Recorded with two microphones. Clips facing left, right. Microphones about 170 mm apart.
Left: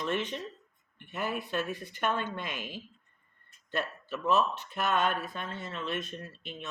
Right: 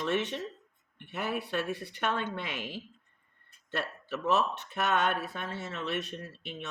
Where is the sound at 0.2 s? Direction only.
70° right (ahead or behind).